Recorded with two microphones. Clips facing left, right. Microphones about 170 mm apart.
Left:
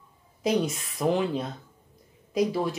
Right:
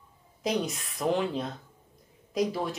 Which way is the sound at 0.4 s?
Centre (ahead or behind).